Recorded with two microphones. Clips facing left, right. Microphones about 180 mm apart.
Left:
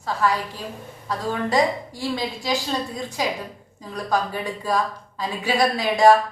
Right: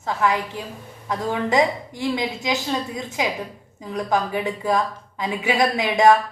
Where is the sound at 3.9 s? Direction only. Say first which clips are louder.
Right 2 dB; 20° right (ahead or behind).